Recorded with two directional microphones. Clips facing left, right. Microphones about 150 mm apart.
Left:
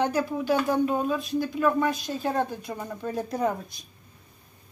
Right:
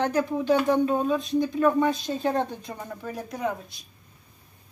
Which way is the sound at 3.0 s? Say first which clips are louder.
Left 6 dB; 25° left (ahead or behind).